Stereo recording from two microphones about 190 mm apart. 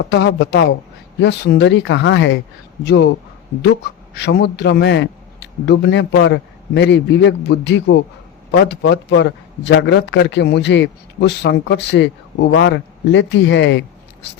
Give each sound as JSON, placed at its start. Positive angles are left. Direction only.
{"t": 0.0, "sound": "a man's voice", "side_deg": 65}
{"t": 4.1, "sound": "a man's voice", "side_deg": 60}